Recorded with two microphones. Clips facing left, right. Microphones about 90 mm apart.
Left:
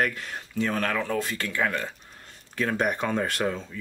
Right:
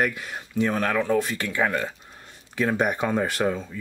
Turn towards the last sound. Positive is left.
turn(degrees=-10)  # may be behind; listen again after turning